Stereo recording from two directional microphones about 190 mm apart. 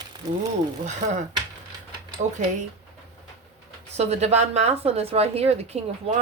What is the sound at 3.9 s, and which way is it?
Speech, 35° right (ahead or behind).